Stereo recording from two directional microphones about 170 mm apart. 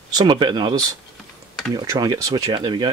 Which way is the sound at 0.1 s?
25° right (ahead or behind).